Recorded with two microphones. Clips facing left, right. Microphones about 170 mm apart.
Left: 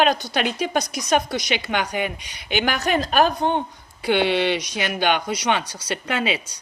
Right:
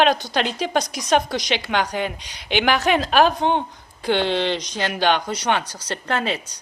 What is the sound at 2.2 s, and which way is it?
Speech, 55° left (ahead or behind).